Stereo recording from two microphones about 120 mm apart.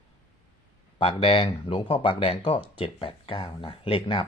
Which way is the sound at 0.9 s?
50° left (ahead or behind).